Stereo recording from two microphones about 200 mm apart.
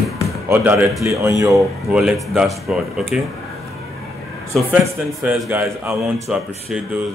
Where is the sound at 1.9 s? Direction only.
5° right (ahead or behind).